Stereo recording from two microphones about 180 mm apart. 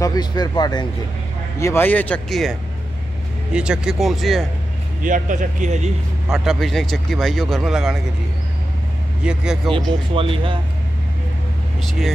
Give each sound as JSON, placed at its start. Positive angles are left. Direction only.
{"t": 0.0, "sound": "speech", "side_deg": 20}
{"t": 3.5, "sound": "speech", "side_deg": -5}
{"t": 5.0, "sound": "speech", "side_deg": -45}
{"t": 6.3, "sound": "speech", "side_deg": 0}
{"t": 9.2, "sound": "speech", "side_deg": -5}
{"t": 10.1, "sound": "speech", "side_deg": -30}